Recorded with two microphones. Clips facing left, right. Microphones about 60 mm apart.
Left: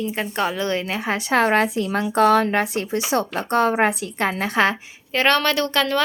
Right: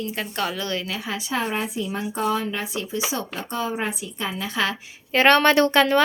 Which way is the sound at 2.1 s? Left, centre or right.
Left.